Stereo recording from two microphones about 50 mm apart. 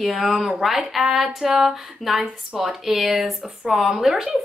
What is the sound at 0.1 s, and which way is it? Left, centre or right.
A woman's voice, centre.